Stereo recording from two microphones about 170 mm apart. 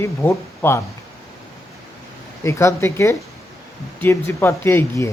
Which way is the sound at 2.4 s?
15° left (ahead or behind).